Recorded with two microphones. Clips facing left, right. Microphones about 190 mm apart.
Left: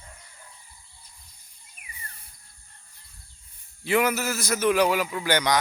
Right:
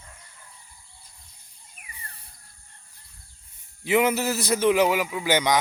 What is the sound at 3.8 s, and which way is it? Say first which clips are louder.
Speech: right 2 dB; 20° right (ahead or behind).